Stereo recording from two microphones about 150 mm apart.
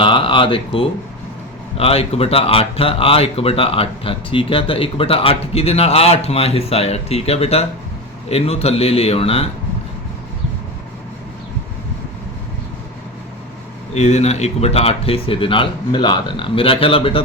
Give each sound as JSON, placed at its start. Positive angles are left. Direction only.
{"t": 0.0, "sound": "speech", "side_deg": 35}
{"t": 13.9, "sound": "speech", "side_deg": 45}